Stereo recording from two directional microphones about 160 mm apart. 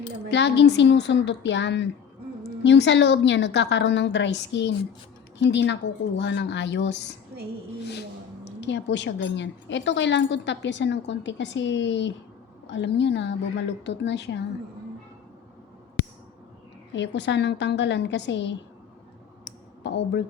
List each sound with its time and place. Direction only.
0.3 s a woman's voice: 90° left
8.6 s a woman's voice: 90° left
17.0 s a woman's voice: 90° left
19.8 s speech: 90° left